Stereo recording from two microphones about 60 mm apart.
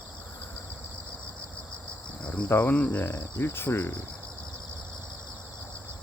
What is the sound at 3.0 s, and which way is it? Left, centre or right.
Speech, left.